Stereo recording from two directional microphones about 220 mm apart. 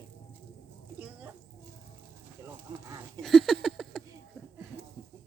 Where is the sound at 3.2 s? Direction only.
Centre (ahead or behind).